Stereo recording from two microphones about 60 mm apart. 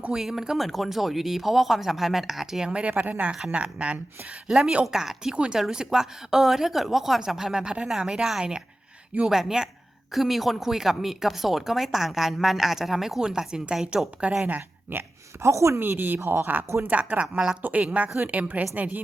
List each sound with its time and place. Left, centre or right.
0.1 s speech: centre
2.8 s a woman's voice: right
14.4 s speech: right
15.4 s speech: right
15.8 s speech: right
16.2 s speech: right
16.8 s speech: right
17.6 s speech: right